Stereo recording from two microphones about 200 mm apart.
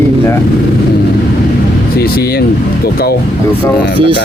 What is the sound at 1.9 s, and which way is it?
Speech, 50° left (ahead or behind).